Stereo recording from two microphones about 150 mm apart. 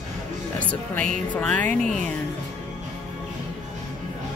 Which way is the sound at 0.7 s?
10° left (ahead or behind).